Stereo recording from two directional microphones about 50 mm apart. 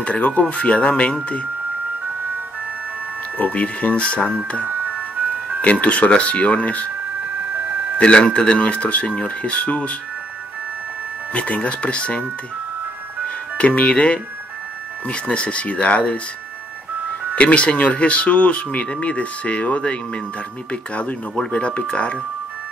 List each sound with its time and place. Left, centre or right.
0.0 s speech: left
3.3 s speech: left
4.6 s ice cream truck: right
5.6 s speech: left
8.0 s speech: left
11.3 s speech: left
13.6 s speech: left
15.2 s speech: left
17.4 s speech: left